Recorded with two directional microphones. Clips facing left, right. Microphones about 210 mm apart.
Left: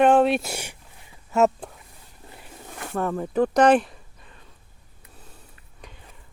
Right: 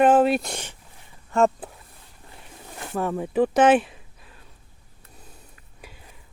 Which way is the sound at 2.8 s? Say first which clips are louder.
Even; 5° right (ahead or behind).